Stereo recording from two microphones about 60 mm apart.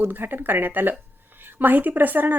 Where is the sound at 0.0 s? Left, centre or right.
Right.